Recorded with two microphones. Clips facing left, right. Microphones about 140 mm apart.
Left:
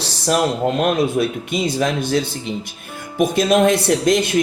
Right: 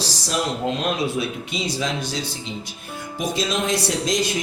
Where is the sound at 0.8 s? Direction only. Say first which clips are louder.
Left 6 dB; 55° left (ahead or behind).